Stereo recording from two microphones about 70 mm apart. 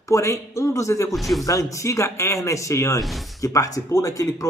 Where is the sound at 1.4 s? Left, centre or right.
Left.